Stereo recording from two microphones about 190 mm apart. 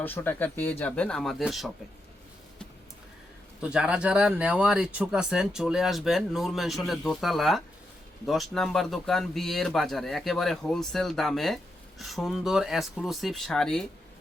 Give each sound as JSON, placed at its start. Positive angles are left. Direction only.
{"t": 0.0, "sound": "speech", "side_deg": 10}
{"t": 3.6, "sound": "speech", "side_deg": -5}